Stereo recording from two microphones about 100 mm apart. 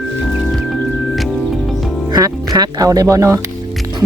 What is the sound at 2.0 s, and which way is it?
Speech, 40° right (ahead or behind).